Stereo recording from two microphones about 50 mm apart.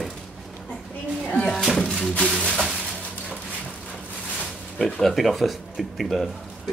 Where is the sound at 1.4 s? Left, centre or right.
Centre.